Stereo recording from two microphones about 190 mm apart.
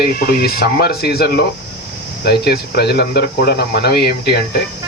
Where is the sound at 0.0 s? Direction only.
55° left (ahead or behind).